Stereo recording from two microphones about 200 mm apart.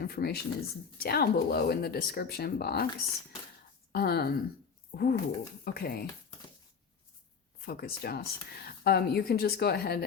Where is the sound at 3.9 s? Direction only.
50° left (ahead or behind).